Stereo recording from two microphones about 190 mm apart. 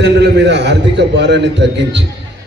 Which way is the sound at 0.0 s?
65° right (ahead or behind).